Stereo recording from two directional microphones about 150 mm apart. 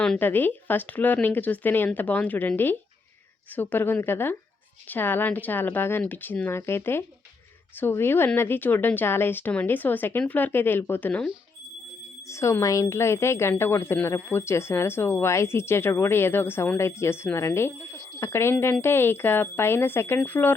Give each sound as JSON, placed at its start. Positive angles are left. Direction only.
{"t": 0.0, "sound": "a woman's voice", "side_deg": 10}
{"t": 12.3, "sound": "a woman's voice", "side_deg": 20}